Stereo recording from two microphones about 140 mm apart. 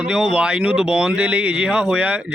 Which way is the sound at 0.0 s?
5° right (ahead or behind).